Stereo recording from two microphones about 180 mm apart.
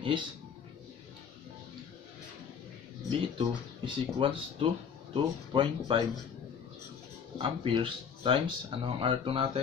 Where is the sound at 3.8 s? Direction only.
30° right (ahead or behind).